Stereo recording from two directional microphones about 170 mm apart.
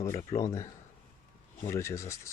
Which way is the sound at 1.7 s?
15° left (ahead or behind).